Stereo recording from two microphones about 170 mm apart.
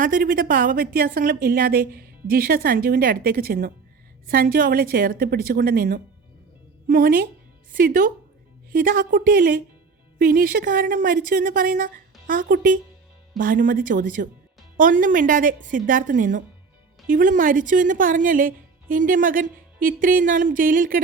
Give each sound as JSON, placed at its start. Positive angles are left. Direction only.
{"t": 0.0, "sound": "a woman's voice", "side_deg": -55}